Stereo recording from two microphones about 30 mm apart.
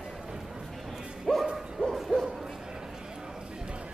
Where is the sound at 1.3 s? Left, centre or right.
Centre.